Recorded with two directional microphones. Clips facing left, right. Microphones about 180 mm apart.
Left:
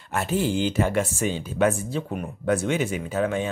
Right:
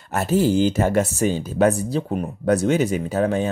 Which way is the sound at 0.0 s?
40° right (ahead or behind).